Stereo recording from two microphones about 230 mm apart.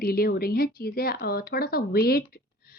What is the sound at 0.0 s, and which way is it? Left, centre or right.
A woman's voice, left.